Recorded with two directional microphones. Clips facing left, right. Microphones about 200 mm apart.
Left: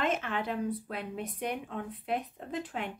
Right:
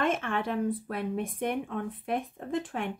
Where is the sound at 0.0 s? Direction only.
50° right (ahead or behind).